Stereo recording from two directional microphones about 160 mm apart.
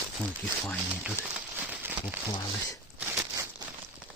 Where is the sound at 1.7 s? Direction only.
10° right (ahead or behind).